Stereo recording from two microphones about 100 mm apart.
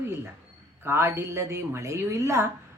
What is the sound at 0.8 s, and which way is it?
A woman's voice, 25° right (ahead or behind).